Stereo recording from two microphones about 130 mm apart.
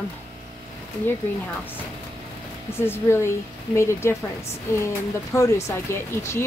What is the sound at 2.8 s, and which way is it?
Speech, 20° left (ahead or behind).